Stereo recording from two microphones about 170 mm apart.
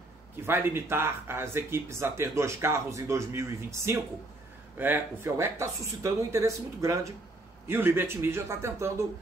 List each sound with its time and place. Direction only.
0.5 s speech: 10° right (ahead or behind)